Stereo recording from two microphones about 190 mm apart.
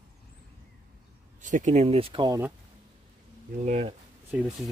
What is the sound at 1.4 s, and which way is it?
Speech, 40° right (ahead or behind).